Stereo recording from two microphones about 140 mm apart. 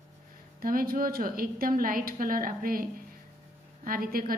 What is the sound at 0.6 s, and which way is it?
A woman's voice, 90° right.